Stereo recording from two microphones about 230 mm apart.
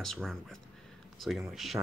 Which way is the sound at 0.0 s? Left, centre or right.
Centre.